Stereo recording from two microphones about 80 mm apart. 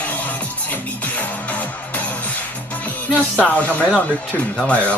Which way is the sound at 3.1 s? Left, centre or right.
Centre.